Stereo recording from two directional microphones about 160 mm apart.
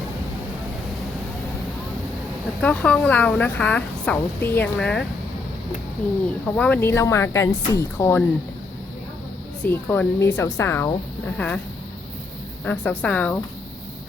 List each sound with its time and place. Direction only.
2.6 s speech: 10° left (ahead or behind)
6.6 s speech: 10° left (ahead or behind)
9.6 s speech: 10° left (ahead or behind)
11.3 s speech: 5° left (ahead or behind)
12.6 s speech: 10° left (ahead or behind)